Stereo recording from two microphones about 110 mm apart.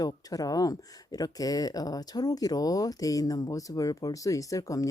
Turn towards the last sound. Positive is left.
turn(degrees=30)  # may be behind; listen again after turning